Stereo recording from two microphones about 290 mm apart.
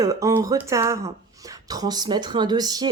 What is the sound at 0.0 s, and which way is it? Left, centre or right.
Speech, centre.